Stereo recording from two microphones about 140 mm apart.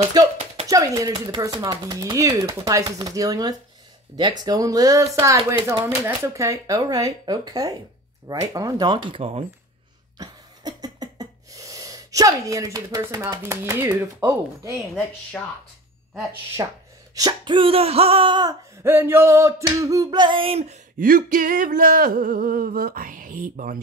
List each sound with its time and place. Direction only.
0.2 s speech: 30° right (ahead or behind)
10.1 s cough: 30° right (ahead or behind)
13.0 s speech: 25° right (ahead or behind)
15.3 s speech: 10° left (ahead or behind)
16.6 s speech: 25° right (ahead or behind)
17.1 s sneeze: 30° right (ahead or behind)
18.9 s speech: 15° right (ahead or behind); by 20.7 s 45° right (ahead or behind)
21.0 s a sound: 80° right